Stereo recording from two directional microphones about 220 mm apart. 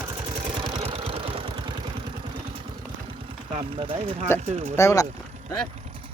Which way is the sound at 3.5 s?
25° right (ahead or behind).